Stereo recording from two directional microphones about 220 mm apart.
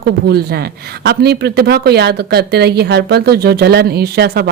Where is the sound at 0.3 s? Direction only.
45° right (ahead or behind).